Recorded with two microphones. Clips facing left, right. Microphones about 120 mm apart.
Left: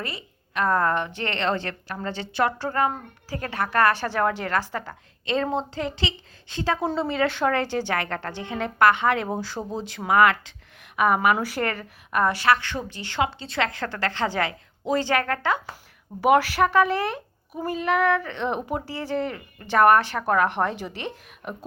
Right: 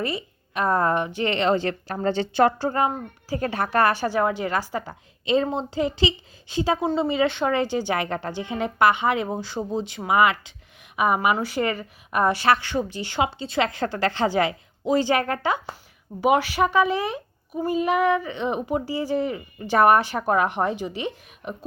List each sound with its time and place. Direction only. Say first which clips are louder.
0.0 s a woman's voice: right 7 dB; 15° right (ahead or behind)
2.0 s a woman's voice: right 5 dB; 35° right (ahead or behind)
2.6 s speech: right 1 dB; 20° right (ahead or behind)
3.9 s a woman's voice: right 2 dB; 10° right (ahead or behind)
7.9 s a woman's voice: right 2 dB; 10° right (ahead or behind)
11.3 s a woman's voice: right 2 dB; centre (ahead or behind)
12.1 s a woman's voice: right 1 dB; 20° right (ahead or behind); by 21.5 s 5° right (ahead or behind)